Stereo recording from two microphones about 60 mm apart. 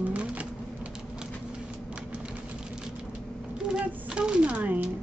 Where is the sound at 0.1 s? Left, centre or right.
Right.